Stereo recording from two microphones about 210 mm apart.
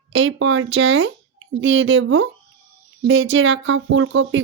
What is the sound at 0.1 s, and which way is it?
Speech, 65° right (ahead or behind).